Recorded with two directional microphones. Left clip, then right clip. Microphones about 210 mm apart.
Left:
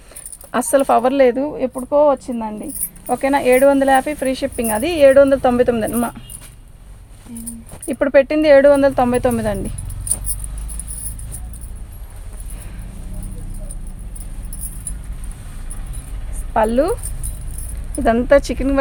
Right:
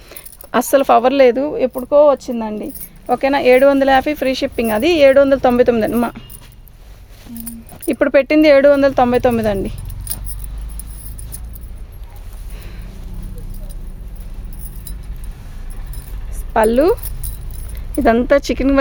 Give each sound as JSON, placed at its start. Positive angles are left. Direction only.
{"t": 0.1, "sound": "speech", "side_deg": -40}
{"t": 7.9, "sound": "speech", "side_deg": -45}
{"t": 16.6, "sound": "speech", "side_deg": -50}
{"t": 18.0, "sound": "speech", "side_deg": -40}